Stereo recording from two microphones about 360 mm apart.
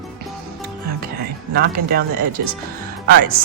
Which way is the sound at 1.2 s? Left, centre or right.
Right.